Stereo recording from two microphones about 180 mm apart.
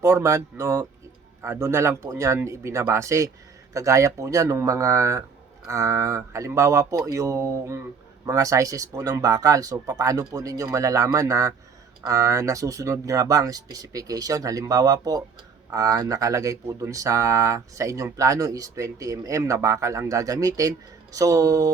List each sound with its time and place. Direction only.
0.0 s speech: 15° right (ahead or behind)